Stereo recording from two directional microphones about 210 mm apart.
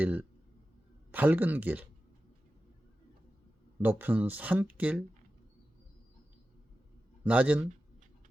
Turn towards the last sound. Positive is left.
turn(degrees=-5)  # may be behind; listen again after turning